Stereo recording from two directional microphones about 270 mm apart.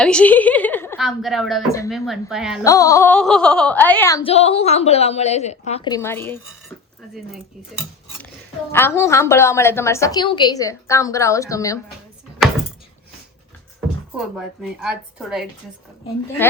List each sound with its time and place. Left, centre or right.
0.0 s a woman's voice: centre
2.6 s a woman's voice: centre
4.2 s a woman's voice: left
8.7 s a woman's voice: centre
14.1 s a woman's voice: centre